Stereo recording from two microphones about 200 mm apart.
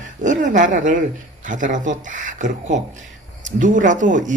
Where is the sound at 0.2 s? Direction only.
40° right (ahead or behind).